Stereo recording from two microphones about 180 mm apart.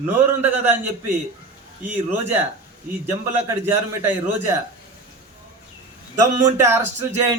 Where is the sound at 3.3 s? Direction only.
10° right (ahead or behind).